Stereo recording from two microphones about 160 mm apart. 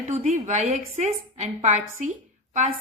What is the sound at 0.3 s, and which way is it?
A woman's voice, 45° right (ahead or behind).